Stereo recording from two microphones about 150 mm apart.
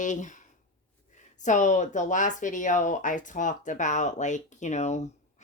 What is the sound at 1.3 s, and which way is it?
Speech, 55° left (ahead or behind).